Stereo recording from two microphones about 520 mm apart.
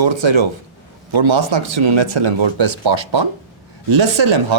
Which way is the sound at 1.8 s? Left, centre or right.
Right.